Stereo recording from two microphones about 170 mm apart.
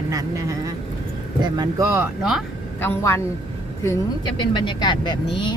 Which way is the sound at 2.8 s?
15° left (ahead or behind).